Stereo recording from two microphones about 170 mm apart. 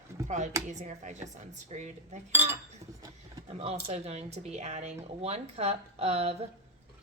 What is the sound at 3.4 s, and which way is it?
Speech, 35° right (ahead or behind).